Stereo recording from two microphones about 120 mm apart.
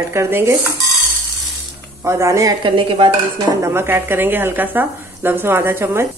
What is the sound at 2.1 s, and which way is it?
Speech, 25° right (ahead or behind).